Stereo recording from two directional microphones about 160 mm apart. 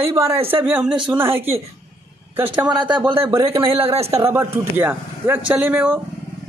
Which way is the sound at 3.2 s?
20° right (ahead or behind).